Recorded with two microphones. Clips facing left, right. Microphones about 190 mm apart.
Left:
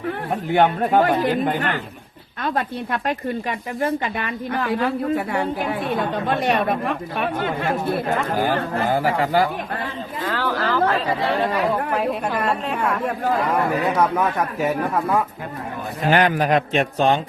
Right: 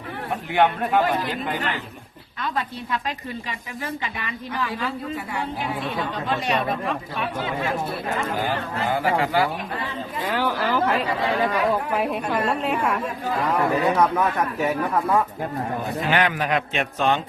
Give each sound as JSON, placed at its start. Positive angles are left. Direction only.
{"t": 0.5, "sound": "a man's voice", "side_deg": 40}
{"t": 10.2, "sound": "speech", "side_deg": -15}
{"t": 12.5, "sound": "speech", "side_deg": 0}
{"t": 14.0, "sound": "speech", "side_deg": 5}
{"t": 16.0, "sound": "a man's voice", "side_deg": 40}